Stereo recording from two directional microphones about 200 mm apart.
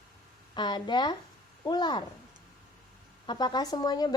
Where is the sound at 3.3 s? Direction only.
20° left (ahead or behind).